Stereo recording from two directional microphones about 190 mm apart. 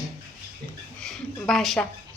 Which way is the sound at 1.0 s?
Centre (ahead or behind).